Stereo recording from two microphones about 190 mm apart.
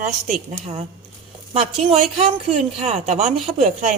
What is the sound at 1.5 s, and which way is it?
Speech, 30° right (ahead or behind).